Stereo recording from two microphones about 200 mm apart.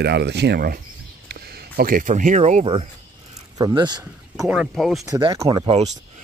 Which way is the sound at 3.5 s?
20° right (ahead or behind).